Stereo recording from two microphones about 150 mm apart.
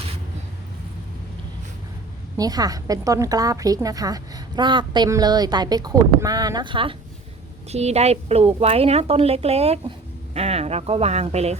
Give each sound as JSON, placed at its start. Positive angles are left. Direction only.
{"t": 2.4, "sound": "a woman's voice", "side_deg": -25}
{"t": 7.7, "sound": "a woman's voice", "side_deg": -45}